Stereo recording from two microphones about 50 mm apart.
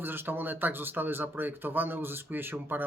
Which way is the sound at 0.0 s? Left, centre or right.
Right.